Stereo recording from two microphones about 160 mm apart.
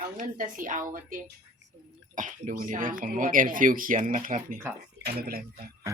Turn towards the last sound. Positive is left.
turn(degrees=-70)  # may be behind; listen again after turning